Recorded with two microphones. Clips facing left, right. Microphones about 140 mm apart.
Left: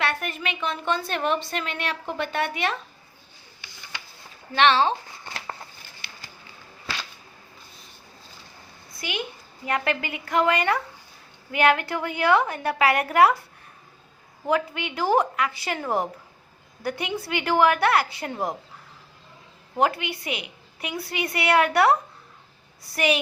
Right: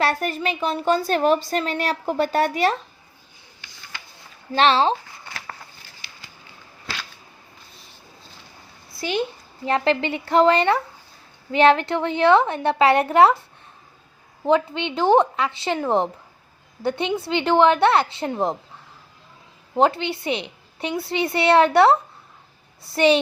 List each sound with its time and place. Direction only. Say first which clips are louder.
0.0 s a woman's voice: right 5 dB; 35° right (ahead or behind)
4.5 s a woman's voice: right 2 dB; 35° right (ahead or behind)
6.0 s a sound: left 3 dB; 60° left (ahead or behind)
8.9 s a sound: right 7 dB; 30° right (ahead or behind)
9.6 s a woman's voice: right 6 dB; 25° right (ahead or behind)
14.4 s a woman's voice: right 5 dB; 25° right (ahead or behind)
16.8 s a woman's voice: right 5 dB; 25° right (ahead or behind)
19.7 s a woman's voice: right 4 dB; 30° right (ahead or behind)